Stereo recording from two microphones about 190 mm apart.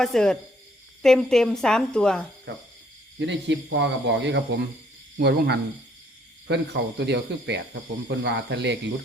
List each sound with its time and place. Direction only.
0.0 s a woman's voice: 5° left (ahead or behind)
2.5 s a man's voice: 65° right (ahead or behind)
5.1 s speech: 55° right (ahead or behind)